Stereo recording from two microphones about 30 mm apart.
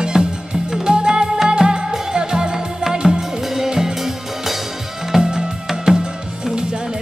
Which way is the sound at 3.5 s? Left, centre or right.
Centre.